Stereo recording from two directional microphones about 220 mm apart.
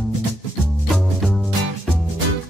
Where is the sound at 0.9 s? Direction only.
Centre (ahead or behind).